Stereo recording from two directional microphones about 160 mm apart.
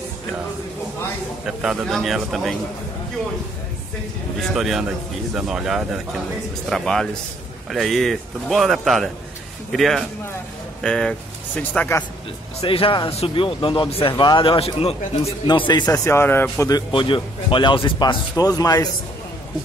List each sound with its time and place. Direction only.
1.4 s a man's voice: 5° right (ahead or behind)
4.6 s a man's voice: centre (ahead or behind)
12.5 s speech: 35° left (ahead or behind)